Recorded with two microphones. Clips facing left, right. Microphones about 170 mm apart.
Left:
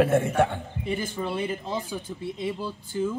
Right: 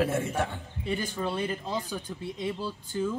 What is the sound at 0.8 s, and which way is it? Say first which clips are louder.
Speech: left 1 dB; 10° left (ahead or behind).